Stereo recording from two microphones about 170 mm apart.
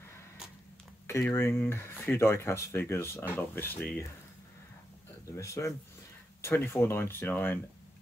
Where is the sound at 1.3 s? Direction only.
15° left (ahead or behind).